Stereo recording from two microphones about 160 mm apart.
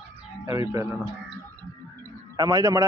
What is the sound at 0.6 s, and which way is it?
Speech, 20° right (ahead or behind).